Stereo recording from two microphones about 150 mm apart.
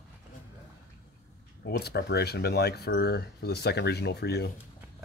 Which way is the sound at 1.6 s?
90° left.